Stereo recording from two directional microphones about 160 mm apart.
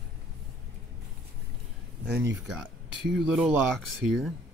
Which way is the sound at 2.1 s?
20° right (ahead or behind).